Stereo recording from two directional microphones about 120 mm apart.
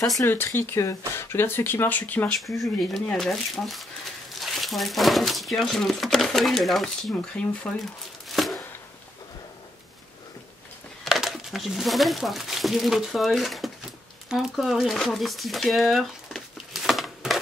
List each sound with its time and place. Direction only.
0.2 s speech: 20° left (ahead or behind)
2.3 s speech: centre (ahead or behind)
8.3 s chopping: centre (ahead or behind)
11.1 s speech: centre (ahead or behind)